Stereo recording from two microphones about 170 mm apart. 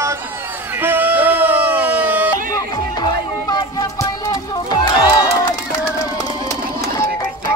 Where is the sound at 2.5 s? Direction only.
25° left (ahead or behind).